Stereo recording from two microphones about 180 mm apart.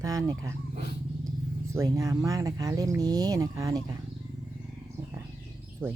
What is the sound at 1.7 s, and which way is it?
Speech, 20° right (ahead or behind).